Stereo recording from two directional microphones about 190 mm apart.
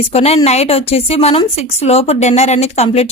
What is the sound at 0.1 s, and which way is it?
A woman's voice, 35° left (ahead or behind).